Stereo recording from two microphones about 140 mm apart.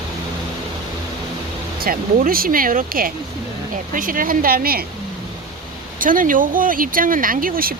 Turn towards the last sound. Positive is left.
turn(degrees=-90)